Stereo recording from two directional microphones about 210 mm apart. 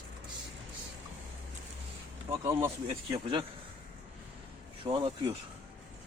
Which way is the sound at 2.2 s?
15° right (ahead or behind).